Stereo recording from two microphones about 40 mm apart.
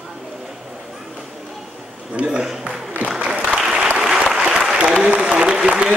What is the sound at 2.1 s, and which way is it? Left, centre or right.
Speech, right.